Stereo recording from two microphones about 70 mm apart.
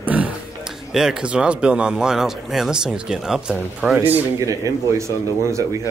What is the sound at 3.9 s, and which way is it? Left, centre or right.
Speech, right.